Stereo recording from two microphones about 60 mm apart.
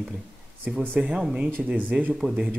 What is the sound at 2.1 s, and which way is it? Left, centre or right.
Speech, centre.